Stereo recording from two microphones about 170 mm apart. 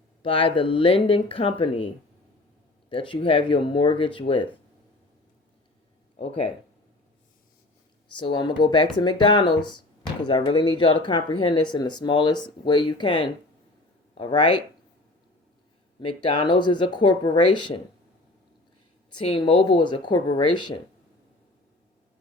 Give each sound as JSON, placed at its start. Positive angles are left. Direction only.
{"t": 0.2, "sound": "speech", "side_deg": 30}
{"t": 2.9, "sound": "speech", "side_deg": 30}
{"t": 8.1, "sound": "speech", "side_deg": 25}
{"t": 16.0, "sound": "speech", "side_deg": 25}
{"t": 19.1, "sound": "speech", "side_deg": 30}